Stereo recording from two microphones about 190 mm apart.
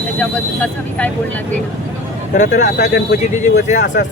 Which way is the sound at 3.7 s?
40° left (ahead or behind).